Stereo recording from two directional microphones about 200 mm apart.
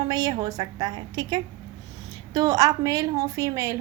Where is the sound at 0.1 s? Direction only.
20° right (ahead or behind).